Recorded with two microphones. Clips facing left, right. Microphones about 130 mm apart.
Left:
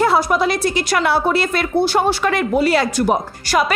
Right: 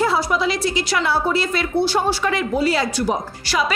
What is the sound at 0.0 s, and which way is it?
A woman's voice, 55° left (ahead or behind).